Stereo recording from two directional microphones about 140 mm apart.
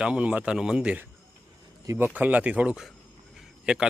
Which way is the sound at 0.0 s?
10° right (ahead or behind).